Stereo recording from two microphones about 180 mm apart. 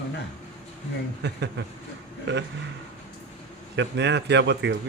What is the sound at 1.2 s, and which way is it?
Speech, 70° right (ahead or behind).